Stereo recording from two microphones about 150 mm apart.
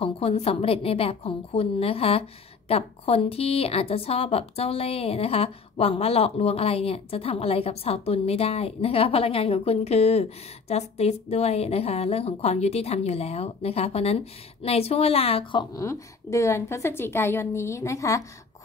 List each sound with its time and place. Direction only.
0.0 s a woman's voice: 40° left (ahead or behind)
15.7 s a woman's voice: 20° left (ahead or behind)